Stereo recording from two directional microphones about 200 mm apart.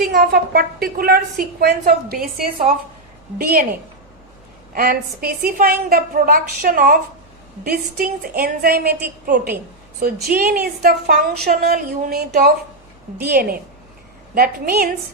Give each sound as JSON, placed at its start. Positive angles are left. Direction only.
{"t": 0.0, "sound": "a woman's voice", "side_deg": -50}